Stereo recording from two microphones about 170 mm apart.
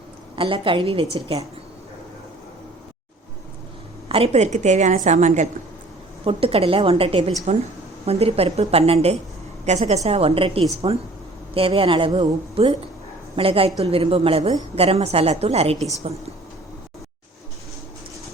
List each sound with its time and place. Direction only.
0.3 s a woman's voice: 30° right (ahead or behind)
4.1 s a woman's voice: 40° right (ahead or behind)